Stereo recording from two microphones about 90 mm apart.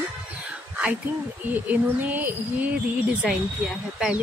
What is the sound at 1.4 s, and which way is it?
Speech, 20° right (ahead or behind).